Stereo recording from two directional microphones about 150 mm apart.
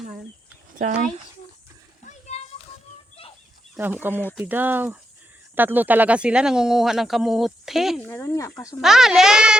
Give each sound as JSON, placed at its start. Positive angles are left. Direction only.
{"t": 0.8, "sound": "speech", "side_deg": -60}
{"t": 2.0, "sound": "children playing", "side_deg": 50}
{"t": 3.8, "sound": "speech", "side_deg": -15}
{"t": 8.0, "sound": "speech", "side_deg": 15}
{"t": 8.8, "sound": "speech", "side_deg": 0}